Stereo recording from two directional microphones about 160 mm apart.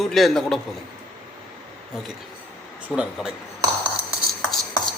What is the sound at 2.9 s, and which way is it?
Speech, 5° right (ahead or behind).